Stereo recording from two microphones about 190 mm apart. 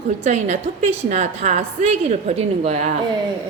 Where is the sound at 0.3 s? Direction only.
40° right (ahead or behind).